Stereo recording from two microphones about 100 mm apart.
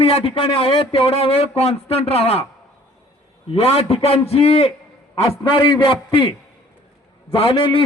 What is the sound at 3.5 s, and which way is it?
A man's voice, 90° left.